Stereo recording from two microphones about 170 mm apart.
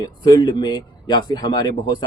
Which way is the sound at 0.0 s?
25° left (ahead or behind).